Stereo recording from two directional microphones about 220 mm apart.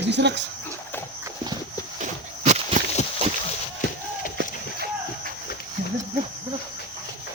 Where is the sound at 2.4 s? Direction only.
30° right (ahead or behind).